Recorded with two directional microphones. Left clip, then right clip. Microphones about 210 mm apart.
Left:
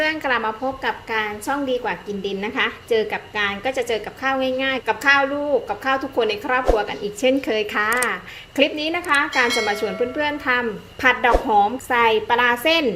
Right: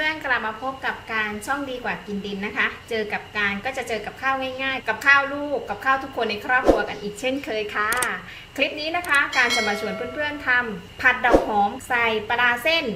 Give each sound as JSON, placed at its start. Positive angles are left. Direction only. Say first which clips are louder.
{"t": 0.0, "sound": "a woman's voice", "louder": "left 3 dB", "side_deg": 35}
{"t": 9.3, "sound": "speech", "louder": "left 1 dB", "side_deg": 0}
{"t": 10.2, "sound": "a woman's voice", "louder": "right 1 dB", "side_deg": 45}